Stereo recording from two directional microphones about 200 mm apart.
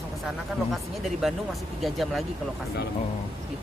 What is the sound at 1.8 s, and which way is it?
Speech, centre (ahead or behind).